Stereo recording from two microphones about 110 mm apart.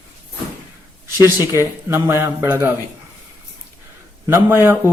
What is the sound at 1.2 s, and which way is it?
Speech, 20° right (ahead or behind).